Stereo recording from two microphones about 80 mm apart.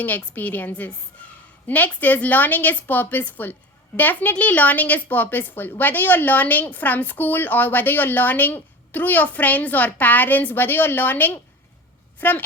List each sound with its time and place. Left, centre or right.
0.0 s a woman's voice: left
1.2 s a sound: centre
1.6 s a woman's voice: left